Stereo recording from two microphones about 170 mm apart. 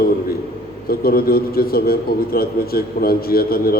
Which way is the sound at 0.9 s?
65° left (ahead or behind).